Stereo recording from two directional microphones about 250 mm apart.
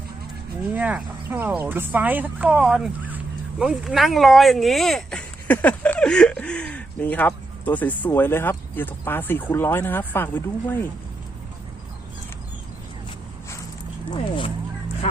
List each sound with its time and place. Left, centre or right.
0.7 s speech: centre
14.1 s speech: centre